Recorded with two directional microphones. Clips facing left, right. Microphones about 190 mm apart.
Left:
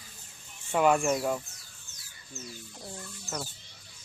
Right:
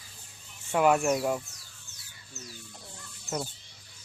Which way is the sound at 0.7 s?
5° right (ahead or behind).